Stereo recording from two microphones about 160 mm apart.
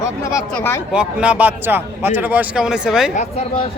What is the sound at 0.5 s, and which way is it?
Speech, 15° left (ahead or behind).